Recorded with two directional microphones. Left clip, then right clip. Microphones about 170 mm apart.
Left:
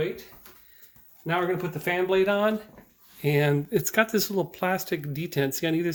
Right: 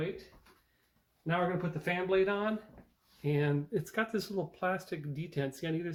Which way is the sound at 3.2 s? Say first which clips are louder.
Left 9 dB; 65° left (ahead or behind).